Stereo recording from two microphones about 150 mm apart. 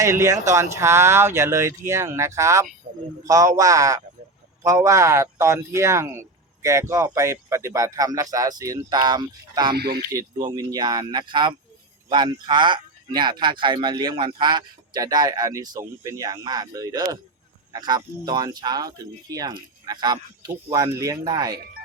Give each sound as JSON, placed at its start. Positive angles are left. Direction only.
{"t": 0.0, "sound": "speech", "side_deg": -20}
{"t": 2.8, "sound": "a sound", "side_deg": -90}
{"t": 3.2, "sound": "speech", "side_deg": -20}
{"t": 9.7, "sound": "speech", "side_deg": -90}
{"t": 10.1, "sound": "speech", "side_deg": -25}